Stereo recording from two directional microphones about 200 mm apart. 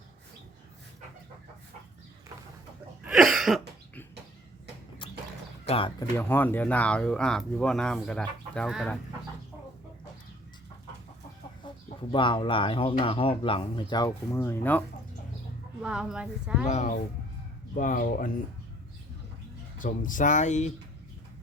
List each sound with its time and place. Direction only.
3.0 s a sound: 5° right (ahead or behind)
5.6 s speech: 30° left (ahead or behind)
6.0 s speech: 10° left (ahead or behind)
12.1 s speech: 25° left (ahead or behind); by 14.8 s 10° left (ahead or behind)
15.8 s speech: 5° right (ahead or behind)
16.6 s speech: 35° left (ahead or behind)
19.8 s speech: 40° left (ahead or behind)